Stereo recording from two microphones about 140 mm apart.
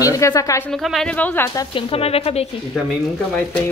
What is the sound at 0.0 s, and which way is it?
Speech, 25° left (ahead or behind).